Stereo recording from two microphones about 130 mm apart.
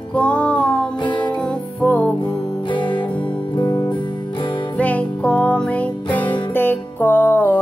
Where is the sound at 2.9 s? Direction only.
10° left (ahead or behind).